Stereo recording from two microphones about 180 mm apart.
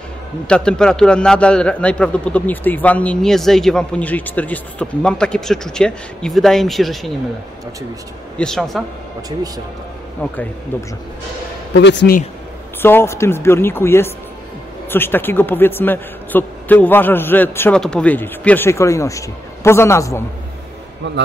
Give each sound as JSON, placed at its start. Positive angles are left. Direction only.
{"t": 0.5, "sound": "a man's voice", "side_deg": 5}
{"t": 8.4, "sound": "a man's voice", "side_deg": 5}
{"t": 10.7, "sound": "a man's voice", "side_deg": 10}
{"t": 11.7, "sound": "speech", "side_deg": 75}
{"t": 12.8, "sound": "a man's voice", "side_deg": 15}